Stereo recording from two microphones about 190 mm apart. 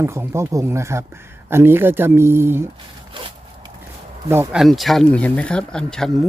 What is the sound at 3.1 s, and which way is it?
Wood, 25° right (ahead or behind).